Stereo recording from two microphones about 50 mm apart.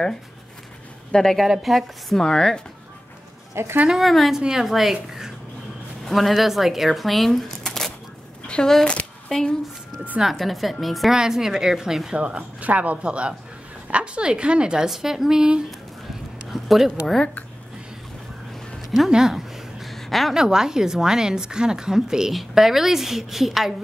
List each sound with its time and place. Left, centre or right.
1.1 s speech: centre
1.4 s a woman's voice: centre
2.2 s speech: centre
3.6 s speech: right
3.9 s a woman's voice: centre
4.4 s a woman's voice: centre
6.0 s speech: centre
10.3 s a woman's voice: centre
11.1 s speech: centre
12.2 s a woman's voice: right
14.9 s speech: centre
16.5 s speech: centre
19.0 s a sound: centre
20.3 s speech: centre